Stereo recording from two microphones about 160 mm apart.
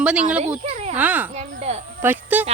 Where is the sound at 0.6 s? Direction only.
45° right (ahead or behind).